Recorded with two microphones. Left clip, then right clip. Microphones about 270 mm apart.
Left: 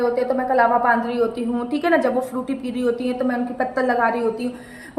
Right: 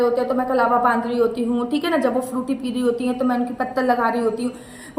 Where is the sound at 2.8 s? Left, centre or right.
Centre.